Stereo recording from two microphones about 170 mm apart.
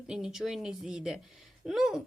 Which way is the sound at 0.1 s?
5° right (ahead or behind).